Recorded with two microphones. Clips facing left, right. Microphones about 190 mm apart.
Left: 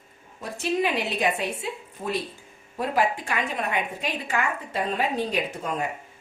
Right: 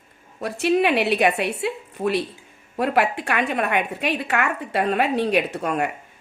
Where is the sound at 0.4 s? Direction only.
70° right (ahead or behind).